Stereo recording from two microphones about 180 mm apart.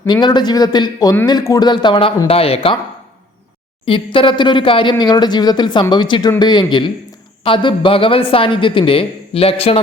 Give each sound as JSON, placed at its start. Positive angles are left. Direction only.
{"t": 0.1, "sound": "speech", "side_deg": 25}
{"t": 3.8, "sound": "speech", "side_deg": 30}